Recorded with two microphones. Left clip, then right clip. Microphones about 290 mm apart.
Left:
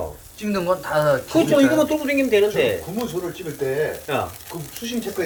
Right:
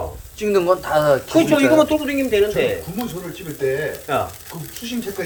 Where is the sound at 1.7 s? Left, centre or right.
Centre.